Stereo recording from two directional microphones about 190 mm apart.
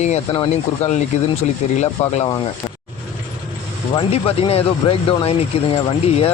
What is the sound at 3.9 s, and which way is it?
Speech, 30° left (ahead or behind).